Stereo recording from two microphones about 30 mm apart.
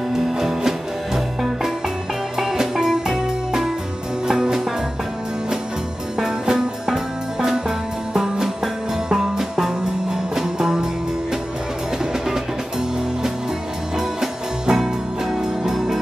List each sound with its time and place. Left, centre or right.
0.1 s music: centre
2.3 s music: centre
6.1 s music: centre
13.9 s music: centre